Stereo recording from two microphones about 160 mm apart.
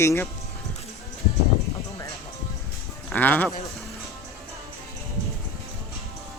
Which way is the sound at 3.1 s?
10° left (ahead or behind).